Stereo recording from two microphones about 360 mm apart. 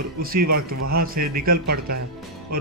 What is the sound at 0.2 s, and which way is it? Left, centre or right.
A man's voice, right.